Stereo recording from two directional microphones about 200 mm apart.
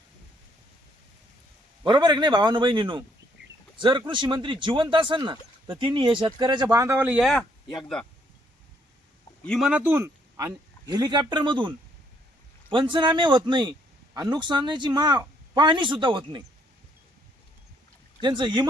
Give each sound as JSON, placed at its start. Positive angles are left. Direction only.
{"t": 1.8, "sound": "speech", "side_deg": -20}
{"t": 9.4, "sound": "speech", "side_deg": 0}
{"t": 12.7, "sound": "speech", "side_deg": -25}
{"t": 18.2, "sound": "speech", "side_deg": -20}